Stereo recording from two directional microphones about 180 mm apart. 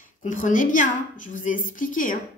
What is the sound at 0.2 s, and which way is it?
A woman's voice, 45° left (ahead or behind).